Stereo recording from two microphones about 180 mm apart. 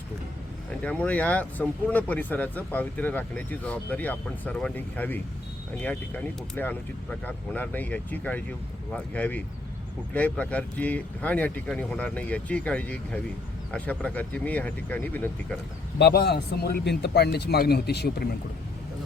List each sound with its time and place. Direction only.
0.8 s speech: 10° left (ahead or behind)
16.0 s a man's voice: 65° left (ahead or behind)